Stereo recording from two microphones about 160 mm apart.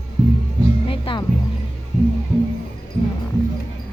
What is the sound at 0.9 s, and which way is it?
Music, 30° left (ahead or behind).